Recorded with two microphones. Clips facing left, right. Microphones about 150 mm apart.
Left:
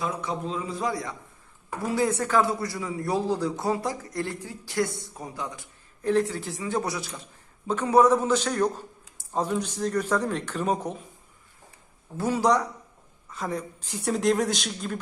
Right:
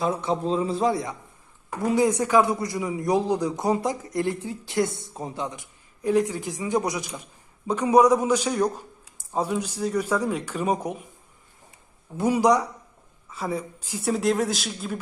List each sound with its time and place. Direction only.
0.0 s a man's voice: 30° right (ahead or behind); by 10.9 s 10° right (ahead or behind)
12.1 s speech: 15° right (ahead or behind)